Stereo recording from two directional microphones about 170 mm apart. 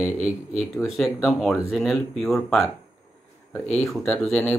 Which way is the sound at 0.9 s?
Centre (ahead or behind).